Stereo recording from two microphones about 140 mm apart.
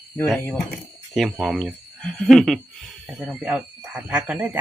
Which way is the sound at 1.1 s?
Centre (ahead or behind).